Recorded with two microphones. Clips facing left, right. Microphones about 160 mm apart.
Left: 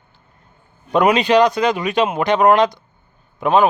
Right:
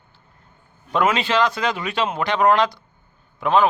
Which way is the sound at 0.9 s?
15° left (ahead or behind).